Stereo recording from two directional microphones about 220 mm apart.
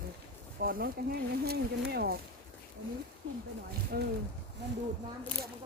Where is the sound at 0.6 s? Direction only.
40° right (ahead or behind).